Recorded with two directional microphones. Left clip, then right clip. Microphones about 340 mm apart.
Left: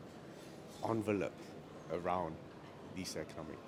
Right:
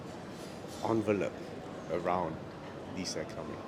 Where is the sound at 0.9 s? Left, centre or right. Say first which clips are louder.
Right 6 dB; left.